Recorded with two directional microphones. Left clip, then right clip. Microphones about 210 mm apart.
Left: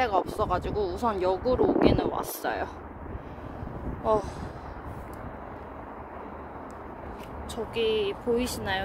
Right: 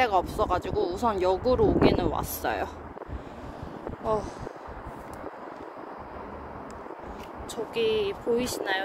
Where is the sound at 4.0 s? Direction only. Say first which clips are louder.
Left 3 dB; 30° left (ahead or behind).